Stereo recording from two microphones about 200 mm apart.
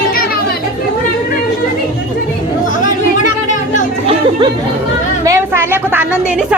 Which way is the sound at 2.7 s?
40° left (ahead or behind).